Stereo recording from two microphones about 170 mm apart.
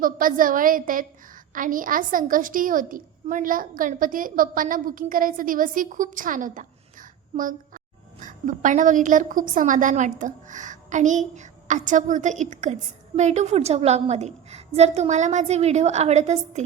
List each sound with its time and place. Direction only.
0.0 s a woman's voice: 55° right (ahead or behind)